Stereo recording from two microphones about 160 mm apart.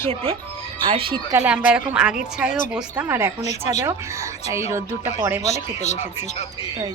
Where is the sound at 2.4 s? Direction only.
55° left (ahead or behind).